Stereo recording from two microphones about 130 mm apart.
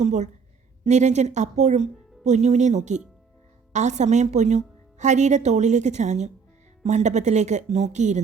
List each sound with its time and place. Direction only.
0.0 s a woman's voice: 65° right (ahead or behind)